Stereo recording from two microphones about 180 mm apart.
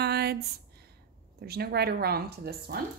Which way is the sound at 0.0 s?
65° right (ahead or behind).